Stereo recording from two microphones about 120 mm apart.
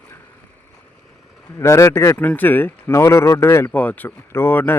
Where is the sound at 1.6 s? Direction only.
25° left (ahead or behind).